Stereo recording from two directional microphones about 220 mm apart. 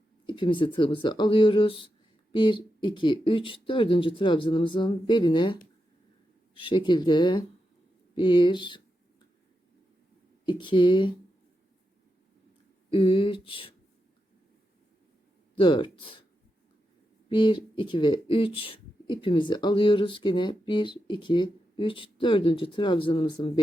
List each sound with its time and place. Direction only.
0.3 s speech: 20° left (ahead or behind)
10.4 s speech: 20° left (ahead or behind)
12.9 s speech: 25° left (ahead or behind)
15.5 s speech: 20° left (ahead or behind)
17.2 s speech: 20° left (ahead or behind)